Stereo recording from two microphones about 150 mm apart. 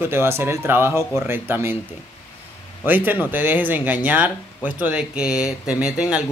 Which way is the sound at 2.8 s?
15° right (ahead or behind).